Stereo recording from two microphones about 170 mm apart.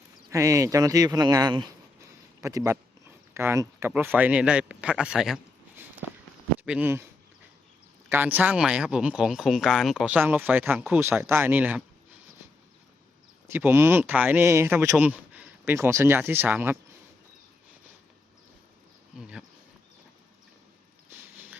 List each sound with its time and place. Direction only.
0.3 s speech: 20° right (ahead or behind)
8.1 s speech: 10° right (ahead or behind)
13.5 s speech: 10° right (ahead or behind)
19.1 s insect: 5° right (ahead or behind)